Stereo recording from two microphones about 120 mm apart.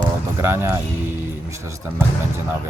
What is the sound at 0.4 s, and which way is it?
Speech, 20° right (ahead or behind).